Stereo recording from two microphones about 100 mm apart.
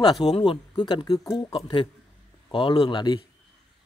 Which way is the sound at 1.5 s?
60° left (ahead or behind).